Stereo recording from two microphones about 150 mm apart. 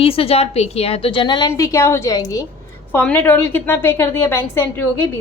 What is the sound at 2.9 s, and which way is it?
A woman's voice, 15° left (ahead or behind).